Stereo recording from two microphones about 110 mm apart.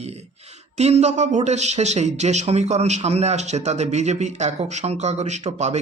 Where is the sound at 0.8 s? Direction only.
80° right.